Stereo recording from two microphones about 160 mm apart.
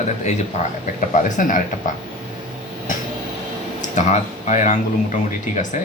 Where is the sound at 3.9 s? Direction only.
50° left (ahead or behind).